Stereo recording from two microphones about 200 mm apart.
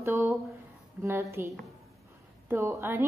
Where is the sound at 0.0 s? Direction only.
15° right (ahead or behind).